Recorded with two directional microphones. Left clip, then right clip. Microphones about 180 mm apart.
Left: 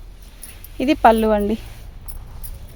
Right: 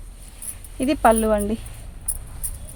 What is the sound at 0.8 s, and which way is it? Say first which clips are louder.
Speech: left 4 dB; 50° left (ahead or behind).